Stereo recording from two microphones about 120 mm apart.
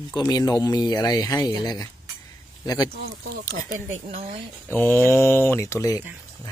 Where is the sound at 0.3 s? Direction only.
35° left (ahead or behind).